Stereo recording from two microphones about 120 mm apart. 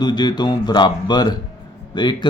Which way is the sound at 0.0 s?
40° left (ahead or behind).